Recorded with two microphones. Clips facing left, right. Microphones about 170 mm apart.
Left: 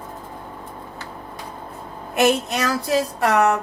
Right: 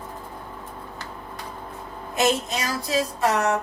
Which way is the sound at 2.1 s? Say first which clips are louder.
Left 4 dB; 65° left (ahead or behind).